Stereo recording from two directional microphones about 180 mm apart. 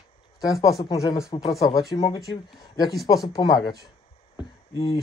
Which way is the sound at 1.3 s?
25° left (ahead or behind).